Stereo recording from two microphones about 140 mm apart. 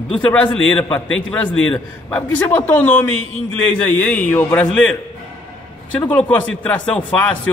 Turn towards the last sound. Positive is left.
turn(degrees=10)  # may be behind; listen again after turning